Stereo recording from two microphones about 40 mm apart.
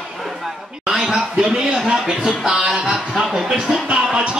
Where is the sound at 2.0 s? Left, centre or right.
Centre.